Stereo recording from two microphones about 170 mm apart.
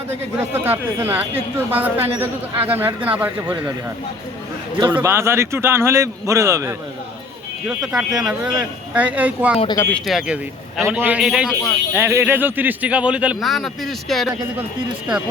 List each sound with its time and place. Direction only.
0.1 s speech: 15° right (ahead or behind)
4.9 s speech: 15° right (ahead or behind)
7.7 s speech: 5° right (ahead or behind)
9.7 s speech: 10° left (ahead or behind)
10.1 s speech: 5° right (ahead or behind)
11.9 s speech: 15° right (ahead or behind)